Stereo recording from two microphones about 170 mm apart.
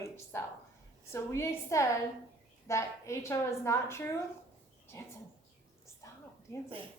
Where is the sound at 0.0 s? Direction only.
15° left (ahead or behind).